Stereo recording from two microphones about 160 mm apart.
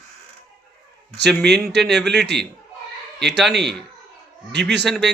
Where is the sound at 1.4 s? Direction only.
90° right.